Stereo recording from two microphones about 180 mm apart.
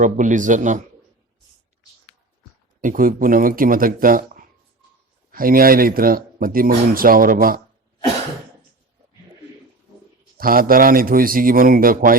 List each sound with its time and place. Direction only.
0.0 s speech: 45° right (ahead or behind)
2.8 s speech: 50° right (ahead or behind)
10.3 s speech: 55° right (ahead or behind)